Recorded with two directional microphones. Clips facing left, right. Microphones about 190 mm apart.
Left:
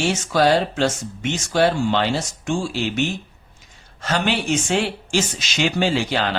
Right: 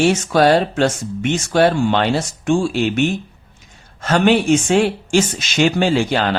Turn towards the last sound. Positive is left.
turn(degrees=-50)  # may be behind; listen again after turning